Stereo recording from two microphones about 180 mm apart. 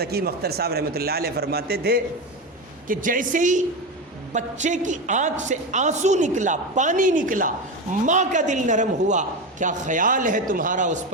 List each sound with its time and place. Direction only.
0.0 s a man's voice: 60° right (ahead or behind)
2.8 s a woman's voice: 50° right (ahead or behind)